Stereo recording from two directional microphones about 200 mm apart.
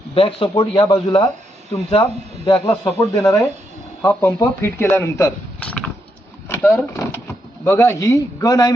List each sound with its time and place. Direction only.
0.1 s a man's voice: 30° left (ahead or behind)